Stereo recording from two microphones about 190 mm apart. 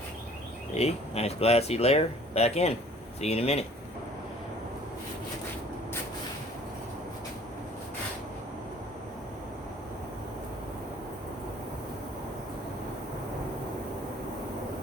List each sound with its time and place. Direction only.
0.7 s speech: 35° left (ahead or behind)